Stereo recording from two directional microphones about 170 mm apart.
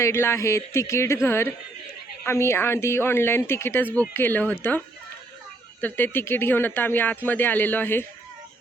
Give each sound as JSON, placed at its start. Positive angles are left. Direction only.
{"t": 0.0, "sound": "speech", "side_deg": 15}
{"t": 5.8, "sound": "speech", "side_deg": 10}